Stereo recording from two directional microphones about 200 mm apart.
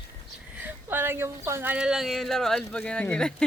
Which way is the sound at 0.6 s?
10° right (ahead or behind).